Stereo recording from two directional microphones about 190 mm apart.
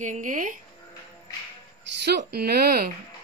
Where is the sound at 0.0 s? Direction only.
40° right (ahead or behind).